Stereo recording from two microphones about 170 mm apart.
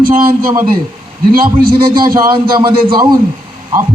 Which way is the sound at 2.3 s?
25° right (ahead or behind).